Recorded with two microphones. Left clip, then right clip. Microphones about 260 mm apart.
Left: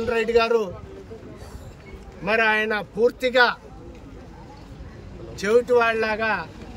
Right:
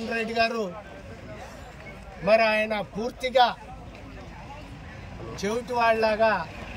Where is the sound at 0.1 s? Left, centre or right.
Centre.